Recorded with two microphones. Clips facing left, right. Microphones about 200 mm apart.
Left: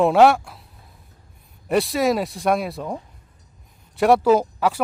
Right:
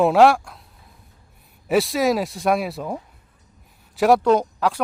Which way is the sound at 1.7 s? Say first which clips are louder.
Right 1 dB; centre (ahead or behind).